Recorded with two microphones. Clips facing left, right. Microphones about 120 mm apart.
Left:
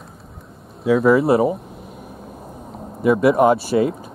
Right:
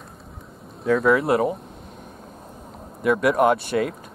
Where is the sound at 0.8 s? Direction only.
5° left (ahead or behind).